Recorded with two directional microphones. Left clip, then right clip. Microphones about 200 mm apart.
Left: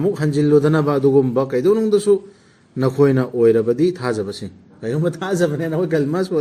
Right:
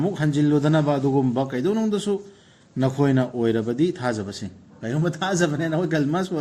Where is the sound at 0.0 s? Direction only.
20° left (ahead or behind).